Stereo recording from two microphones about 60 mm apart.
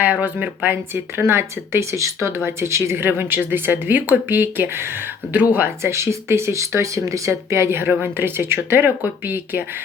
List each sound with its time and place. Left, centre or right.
0.0 s speech: right
1.2 s a woman's voice: right
5.8 s a woman's voice: right